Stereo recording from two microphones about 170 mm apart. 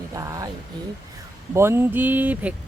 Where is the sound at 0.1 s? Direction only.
20° right (ahead or behind).